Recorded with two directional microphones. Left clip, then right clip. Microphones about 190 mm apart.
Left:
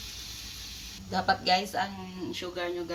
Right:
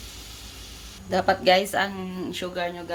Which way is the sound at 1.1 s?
40° right (ahead or behind).